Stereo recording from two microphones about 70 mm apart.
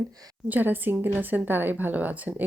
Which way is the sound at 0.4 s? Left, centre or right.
Right.